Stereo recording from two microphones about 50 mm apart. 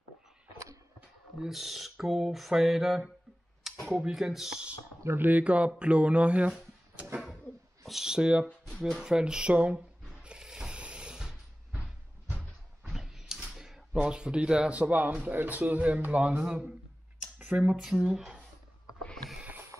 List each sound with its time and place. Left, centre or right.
1.4 s a sound: centre
3.9 s speech: centre
5.2 s speech: right
7.8 s speech: centre
8.7 s speech: centre
9.0 s speech: centre
10.0 s a sound: centre
12.8 s a sound: centre
14.0 s speech: centre
17.5 s speech: right
17.7 s speech: centre